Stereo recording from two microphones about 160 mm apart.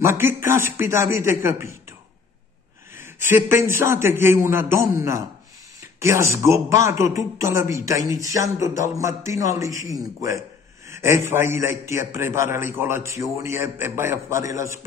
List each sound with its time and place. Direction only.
0.0 s a man's voice: 15° right (ahead or behind)